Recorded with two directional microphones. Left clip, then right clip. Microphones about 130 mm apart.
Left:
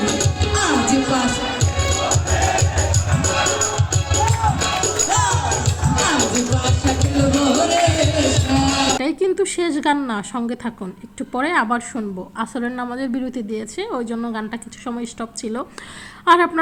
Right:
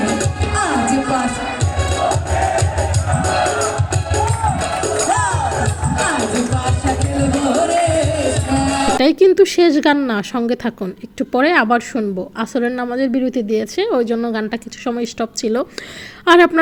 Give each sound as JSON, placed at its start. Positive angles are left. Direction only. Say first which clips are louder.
{"t": 0.0, "sound": "music", "louder": "right 1 dB", "side_deg": 0}
{"t": 9.0, "sound": "a woman's voice", "louder": "right 8 dB", "side_deg": -30}
{"t": 13.5, "sound": "a woman's voice", "louder": "right 9 dB", "side_deg": -25}